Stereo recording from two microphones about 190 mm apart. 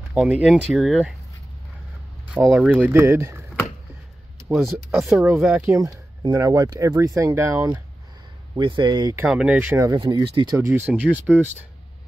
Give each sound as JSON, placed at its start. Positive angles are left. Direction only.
{"t": 0.1, "sound": "speech", "side_deg": -5}
{"t": 2.3, "sound": "speech", "side_deg": -5}
{"t": 4.5, "sound": "speech", "side_deg": 0}
{"t": 5.7, "sound": "speech", "side_deg": -20}
{"t": 8.5, "sound": "speech", "side_deg": -25}
{"t": 9.1, "sound": "speech", "side_deg": -5}